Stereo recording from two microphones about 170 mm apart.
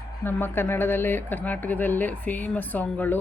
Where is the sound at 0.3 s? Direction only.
10° left (ahead or behind).